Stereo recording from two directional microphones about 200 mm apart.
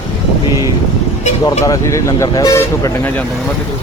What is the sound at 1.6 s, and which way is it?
Speech, 15° left (ahead or behind).